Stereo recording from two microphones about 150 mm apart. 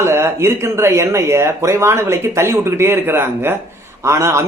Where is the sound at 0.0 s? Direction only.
15° right (ahead or behind).